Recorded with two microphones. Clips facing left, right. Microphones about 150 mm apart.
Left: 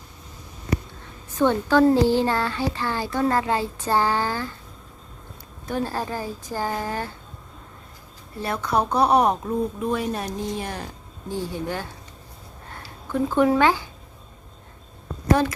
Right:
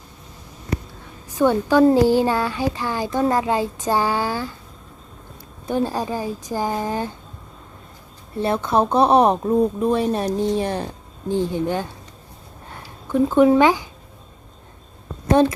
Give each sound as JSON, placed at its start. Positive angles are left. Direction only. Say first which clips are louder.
{"t": 1.3, "sound": "a child's voice", "louder": "right 2 dB", "side_deg": -10}
{"t": 5.6, "sound": "a child's voice", "louder": "right 4 dB", "side_deg": -20}
{"t": 8.4, "sound": "a woman's voice", "louder": "right 5 dB", "side_deg": -25}
{"t": 13.1, "sound": "a child's voice", "louder": "right 5 dB", "side_deg": -15}
{"t": 15.3, "sound": "a woman's voice", "louder": "right 4 dB", "side_deg": -25}